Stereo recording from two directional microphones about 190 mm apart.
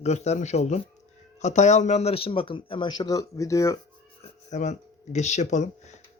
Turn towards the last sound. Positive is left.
turn(degrees=35)  # may be behind; listen again after turning